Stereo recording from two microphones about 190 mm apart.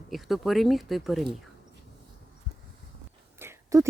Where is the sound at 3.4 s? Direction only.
15° right (ahead or behind).